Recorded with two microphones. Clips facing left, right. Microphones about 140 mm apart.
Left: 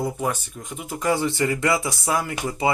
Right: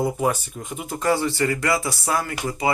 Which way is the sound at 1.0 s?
15° left (ahead or behind).